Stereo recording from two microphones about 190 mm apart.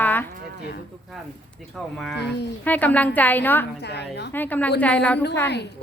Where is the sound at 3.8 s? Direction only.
60° left (ahead or behind).